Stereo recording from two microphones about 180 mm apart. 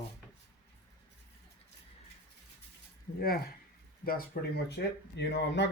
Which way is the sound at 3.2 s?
55° left (ahead or behind).